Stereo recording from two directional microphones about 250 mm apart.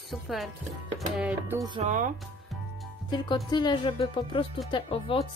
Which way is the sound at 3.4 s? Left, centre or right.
Centre.